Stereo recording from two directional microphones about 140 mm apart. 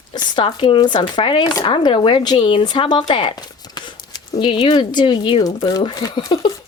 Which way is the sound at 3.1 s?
40° left (ahead or behind).